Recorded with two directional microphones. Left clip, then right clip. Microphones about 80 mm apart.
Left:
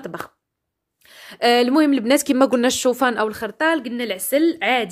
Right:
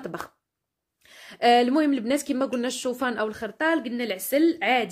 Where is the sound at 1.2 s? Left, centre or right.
Left.